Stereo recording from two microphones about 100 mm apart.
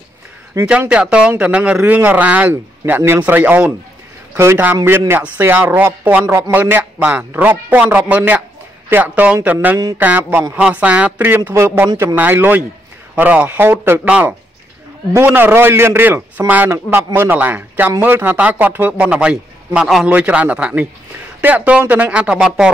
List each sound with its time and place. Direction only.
0.7 s a man's voice: 10° right (ahead or behind); by 6.5 s 30° right (ahead or behind)
6.5 s a man's voice: 15° right (ahead or behind)
15.1 s a man's voice: 20° right (ahead or behind)